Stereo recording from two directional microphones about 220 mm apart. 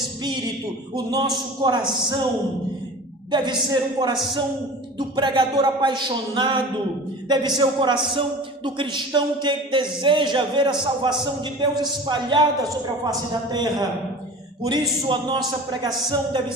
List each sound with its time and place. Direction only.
0.9 s a man's voice: 15° right (ahead or behind)
3.3 s a man's voice: 20° right (ahead or behind)
13.5 s a man's voice: 20° right (ahead or behind)